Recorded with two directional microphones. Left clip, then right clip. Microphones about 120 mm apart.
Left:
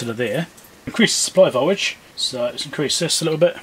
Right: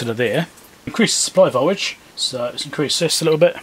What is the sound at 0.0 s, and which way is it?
Speech, 25° right (ahead or behind).